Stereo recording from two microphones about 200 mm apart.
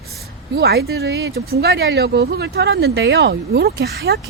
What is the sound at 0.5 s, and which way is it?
Speech, 50° right (ahead or behind).